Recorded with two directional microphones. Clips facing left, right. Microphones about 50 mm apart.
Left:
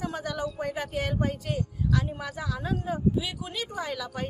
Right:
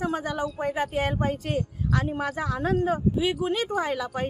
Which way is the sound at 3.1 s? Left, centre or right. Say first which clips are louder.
Right 7 dB; right.